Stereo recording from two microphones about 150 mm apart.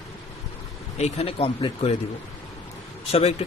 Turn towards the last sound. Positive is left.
turn(degrees=40)  # may be behind; listen again after turning